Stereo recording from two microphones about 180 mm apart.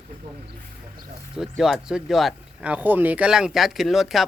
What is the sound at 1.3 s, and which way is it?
Speech, centre (ahead or behind).